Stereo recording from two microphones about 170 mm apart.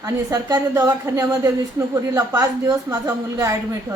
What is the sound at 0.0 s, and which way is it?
A woman's voice, 20° right (ahead or behind).